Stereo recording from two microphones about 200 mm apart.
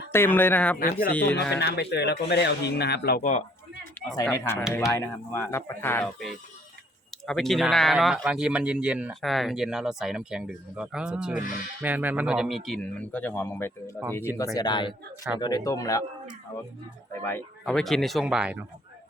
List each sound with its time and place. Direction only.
0.1 s speech: 10° left (ahead or behind)
0.8 s speech: 50° left (ahead or behind)
1.1 s speech: 10° left (ahead or behind)
1.5 s speech: 55° left (ahead or behind)
4.1 s speech: 15° left (ahead or behind)
7.3 s speech: centre (ahead or behind)
17.1 s speech: 10° left (ahead or behind); by 18.6 s 5° right (ahead or behind)